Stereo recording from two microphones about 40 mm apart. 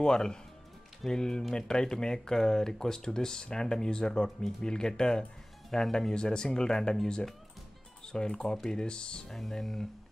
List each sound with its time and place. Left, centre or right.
0.0 s speech: centre
9.3 s speech: centre